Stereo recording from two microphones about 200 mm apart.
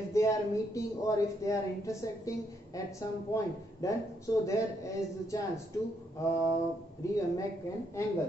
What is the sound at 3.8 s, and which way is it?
A woman's voice, 15° left (ahead or behind).